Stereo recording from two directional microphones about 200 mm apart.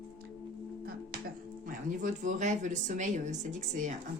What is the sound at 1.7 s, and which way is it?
Speech, 40° right (ahead or behind).